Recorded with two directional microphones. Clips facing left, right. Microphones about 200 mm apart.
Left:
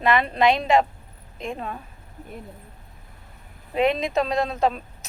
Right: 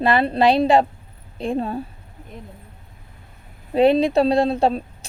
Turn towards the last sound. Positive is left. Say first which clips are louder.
# right 5 dB
turn(degrees=-30)  # may be behind; listen again after turning